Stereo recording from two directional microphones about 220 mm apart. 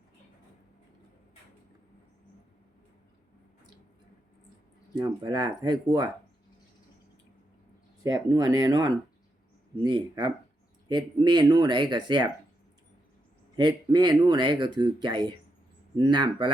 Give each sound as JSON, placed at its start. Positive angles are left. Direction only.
{"t": 4.9, "sound": "speech", "side_deg": -20}
{"t": 8.0, "sound": "speech", "side_deg": -15}
{"t": 13.6, "sound": "speech", "side_deg": -20}